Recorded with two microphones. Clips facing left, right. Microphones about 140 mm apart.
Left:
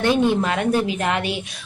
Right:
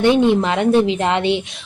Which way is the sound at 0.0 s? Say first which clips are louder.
Right 4 dB; 20° right (ahead or behind).